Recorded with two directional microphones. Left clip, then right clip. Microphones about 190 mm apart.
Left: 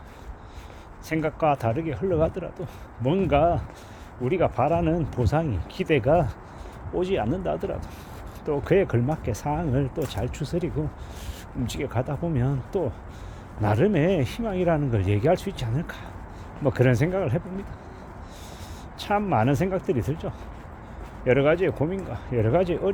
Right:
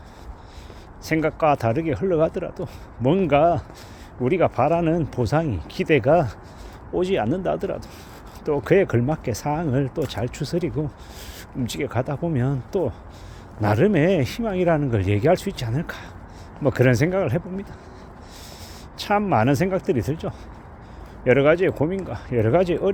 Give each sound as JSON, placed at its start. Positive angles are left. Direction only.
{"t": 1.0, "sound": "speech", "side_deg": -30}
{"t": 18.9, "sound": "speech", "side_deg": -30}